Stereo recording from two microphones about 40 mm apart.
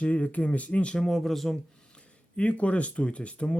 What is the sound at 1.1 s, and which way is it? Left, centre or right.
Speech, centre.